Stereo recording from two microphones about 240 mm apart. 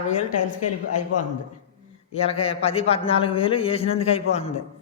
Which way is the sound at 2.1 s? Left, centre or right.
Left.